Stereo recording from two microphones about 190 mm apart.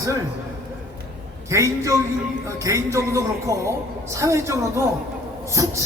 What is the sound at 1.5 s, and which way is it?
A woman's voice, 15° right (ahead or behind).